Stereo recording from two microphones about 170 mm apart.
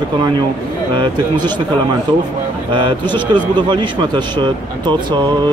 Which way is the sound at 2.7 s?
30° right (ahead or behind).